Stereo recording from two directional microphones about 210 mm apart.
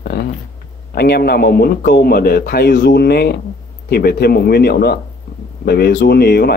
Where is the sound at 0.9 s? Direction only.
50° left (ahead or behind).